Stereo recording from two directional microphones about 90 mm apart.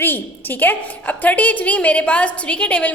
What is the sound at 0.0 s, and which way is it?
A woman's voice, 20° left (ahead or behind).